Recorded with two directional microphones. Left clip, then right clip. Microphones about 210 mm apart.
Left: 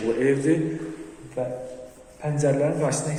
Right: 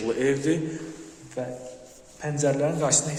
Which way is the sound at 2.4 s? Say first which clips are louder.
Left 2 dB; 25° right (ahead or behind).